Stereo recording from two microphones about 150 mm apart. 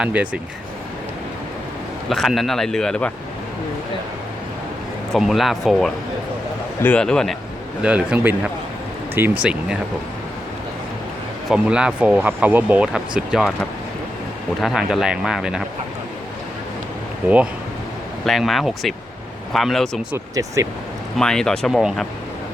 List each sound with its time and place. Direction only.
0.0 s speech: 10° right (ahead or behind)
2.0 s speech: centre (ahead or behind)
5.1 s speech: centre (ahead or behind)
7.8 s speech: 10° right (ahead or behind)
11.4 s speech: 5° right (ahead or behind)
17.2 s speech: 10° right (ahead or behind)
20.1 s speech: 20° right (ahead or behind)
21.2 s speech: 5° left (ahead or behind)